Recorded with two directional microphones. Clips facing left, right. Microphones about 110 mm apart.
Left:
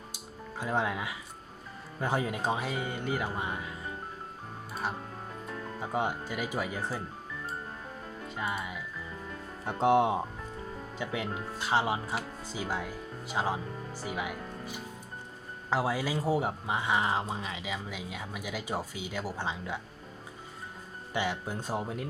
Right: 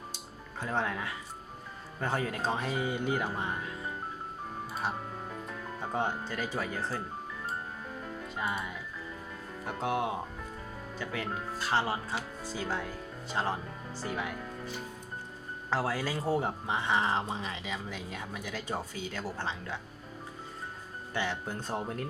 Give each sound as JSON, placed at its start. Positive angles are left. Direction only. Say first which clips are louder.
{"t": 0.6, "sound": "speech", "louder": "left 2 dB", "side_deg": 10}
{"t": 5.8, "sound": "speech", "louder": "left 1 dB", "side_deg": 10}
{"t": 8.4, "sound": "speech", "louder": "even", "side_deg": 0}
{"t": 9.6, "sound": "speech", "louder": "left 7 dB", "side_deg": 25}
{"t": 21.1, "sound": "speech", "louder": "left 2 dB", "side_deg": 10}